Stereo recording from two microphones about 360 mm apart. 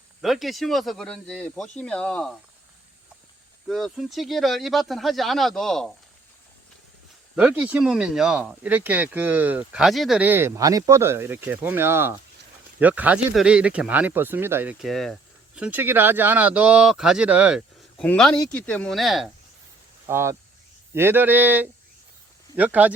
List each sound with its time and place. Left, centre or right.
0.2 s speech: centre
3.7 s speech: centre
7.3 s speech: centre